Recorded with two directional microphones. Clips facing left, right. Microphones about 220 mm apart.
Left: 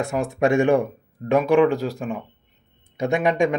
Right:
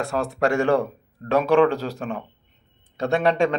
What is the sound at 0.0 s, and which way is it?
A man's voice, 15° left (ahead or behind).